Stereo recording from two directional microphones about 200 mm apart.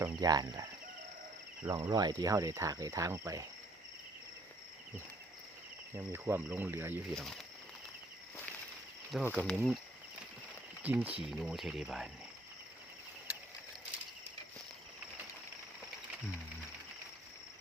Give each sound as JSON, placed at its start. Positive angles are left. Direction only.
{"t": 0.0, "sound": "speech", "side_deg": -20}
{"t": 5.9, "sound": "speech", "side_deg": -10}
{"t": 7.1, "sound": "speech", "side_deg": 0}
{"t": 9.2, "sound": "speech", "side_deg": 10}
{"t": 10.8, "sound": "speech", "side_deg": -5}